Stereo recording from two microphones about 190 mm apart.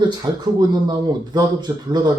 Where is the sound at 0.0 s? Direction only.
20° right (ahead or behind).